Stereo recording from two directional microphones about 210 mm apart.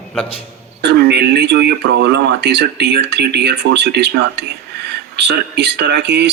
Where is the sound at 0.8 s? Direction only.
55° right (ahead or behind).